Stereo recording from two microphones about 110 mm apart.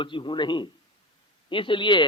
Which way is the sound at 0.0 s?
50° left (ahead or behind).